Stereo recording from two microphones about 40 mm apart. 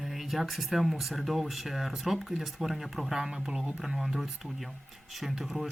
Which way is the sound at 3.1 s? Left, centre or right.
Centre.